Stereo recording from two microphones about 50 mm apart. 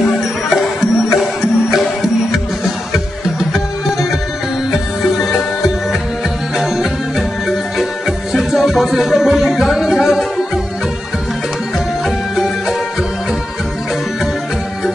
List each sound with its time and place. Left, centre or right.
0.6 s music: centre